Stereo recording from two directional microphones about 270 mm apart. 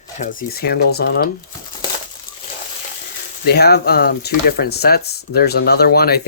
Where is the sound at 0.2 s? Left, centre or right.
Left.